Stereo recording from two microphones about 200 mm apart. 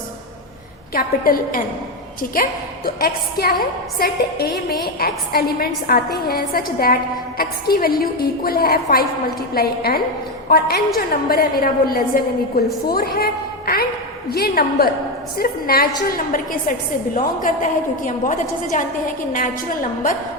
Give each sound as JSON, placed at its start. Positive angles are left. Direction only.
{"t": 0.9, "sound": "a woman's voice", "side_deg": 45}